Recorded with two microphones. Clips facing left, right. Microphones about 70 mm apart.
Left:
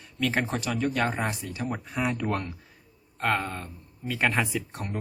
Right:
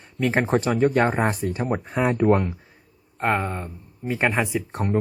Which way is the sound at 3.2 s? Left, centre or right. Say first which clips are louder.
Right 4 dB; right.